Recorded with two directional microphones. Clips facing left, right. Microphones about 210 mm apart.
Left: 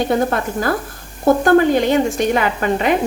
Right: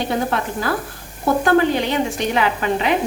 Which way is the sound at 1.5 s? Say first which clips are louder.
Left 3 dB; 45° left (ahead or behind).